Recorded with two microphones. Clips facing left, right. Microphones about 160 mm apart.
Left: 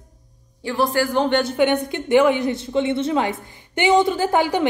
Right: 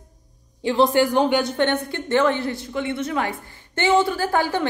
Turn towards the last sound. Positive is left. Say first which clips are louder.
# left 3 dB
turn(degrees=15)  # may be behind; listen again after turning